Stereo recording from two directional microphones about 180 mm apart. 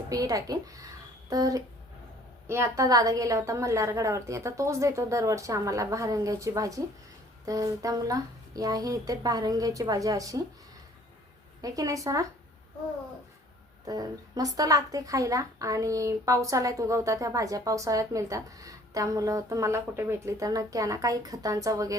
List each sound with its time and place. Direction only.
0.1 s a woman's voice: 20° right (ahead or behind)
11.6 s a woman's voice: 20° right (ahead or behind)
13.8 s a woman's voice: 20° right (ahead or behind)